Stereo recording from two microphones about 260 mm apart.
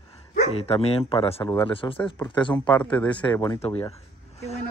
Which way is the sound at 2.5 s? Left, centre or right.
Centre.